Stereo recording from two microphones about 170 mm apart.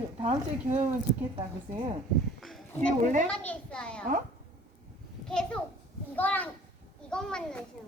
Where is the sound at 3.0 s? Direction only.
50° right (ahead or behind).